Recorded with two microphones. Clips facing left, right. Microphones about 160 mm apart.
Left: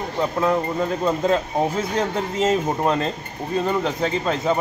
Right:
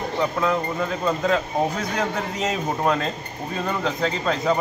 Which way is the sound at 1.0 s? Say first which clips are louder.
Left 2 dB; 25° left (ahead or behind).